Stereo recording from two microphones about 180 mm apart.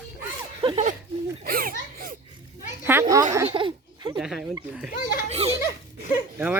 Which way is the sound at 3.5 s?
25° right (ahead or behind).